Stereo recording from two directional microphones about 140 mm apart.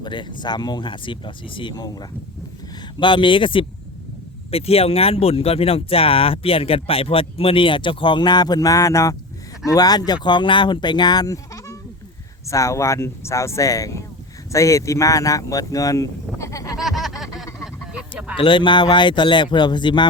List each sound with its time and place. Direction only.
0.0 s speech: 35° left (ahead or behind)
16.7 s a sound: centre (ahead or behind)
18.3 s speech: 35° left (ahead or behind)